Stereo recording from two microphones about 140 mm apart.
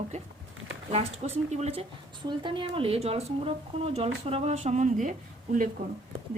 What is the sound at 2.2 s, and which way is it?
Speech, 35° right (ahead or behind).